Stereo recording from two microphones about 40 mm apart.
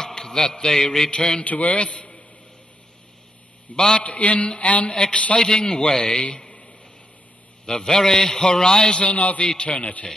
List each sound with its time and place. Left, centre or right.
0.0 s a man's voice: centre
1.4 s a man's voice: left
1.7 s a man's voice: left
3.7 s a man's voice: centre
4.0 s a man's voice: left
5.4 s a man's voice: centre
7.6 s a man's voice: centre; by 10.0 s left